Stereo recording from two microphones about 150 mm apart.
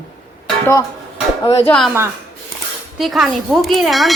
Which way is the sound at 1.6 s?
5° left (ahead or behind).